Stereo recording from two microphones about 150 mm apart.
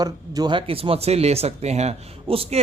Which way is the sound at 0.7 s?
40° right (ahead or behind).